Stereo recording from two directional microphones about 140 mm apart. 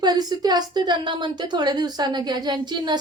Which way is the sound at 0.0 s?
30° right (ahead or behind).